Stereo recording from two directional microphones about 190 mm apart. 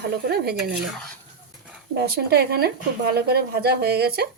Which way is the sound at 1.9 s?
55° right (ahead or behind).